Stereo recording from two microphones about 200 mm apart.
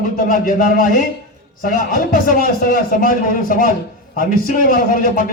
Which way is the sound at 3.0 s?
45° left (ahead or behind).